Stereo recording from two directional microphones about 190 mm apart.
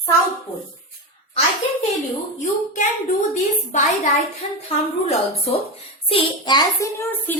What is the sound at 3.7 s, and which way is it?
A woman's voice, 40° left (ahead or behind).